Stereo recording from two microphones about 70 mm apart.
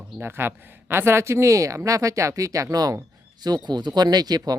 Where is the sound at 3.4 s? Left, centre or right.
Right.